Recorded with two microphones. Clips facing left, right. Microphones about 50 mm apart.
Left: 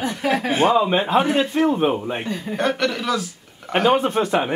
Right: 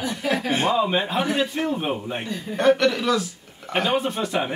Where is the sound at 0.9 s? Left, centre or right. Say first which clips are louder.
Left 5 dB; left.